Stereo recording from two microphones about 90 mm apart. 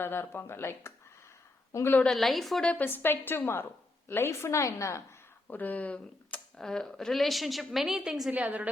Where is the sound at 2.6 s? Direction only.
20° left (ahead or behind); by 5.0 s 35° left (ahead or behind).